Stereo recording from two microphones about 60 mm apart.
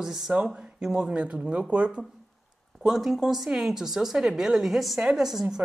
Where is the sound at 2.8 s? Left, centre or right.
Centre.